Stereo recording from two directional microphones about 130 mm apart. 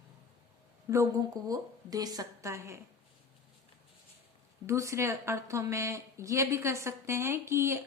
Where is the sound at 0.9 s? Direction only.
25° right (ahead or behind).